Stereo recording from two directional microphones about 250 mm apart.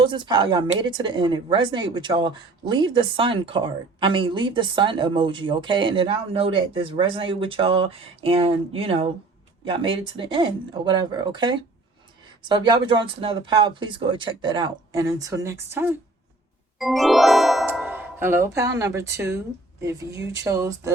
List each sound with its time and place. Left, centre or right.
0.0 s speech: centre